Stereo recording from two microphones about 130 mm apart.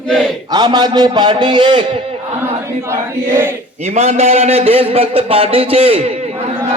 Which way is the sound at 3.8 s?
60° right (ahead or behind).